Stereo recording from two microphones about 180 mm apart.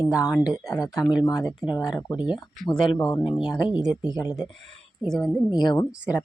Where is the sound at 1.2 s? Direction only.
20° left (ahead or behind).